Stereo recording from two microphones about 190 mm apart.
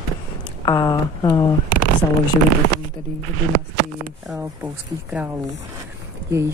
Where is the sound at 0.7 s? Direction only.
20° left (ahead or behind).